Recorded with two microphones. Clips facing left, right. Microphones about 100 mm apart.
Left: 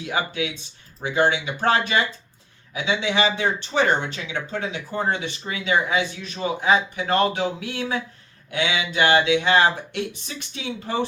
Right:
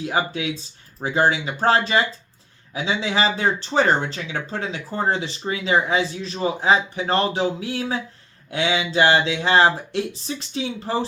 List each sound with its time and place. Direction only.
0.0 s speech: 35° right (ahead or behind)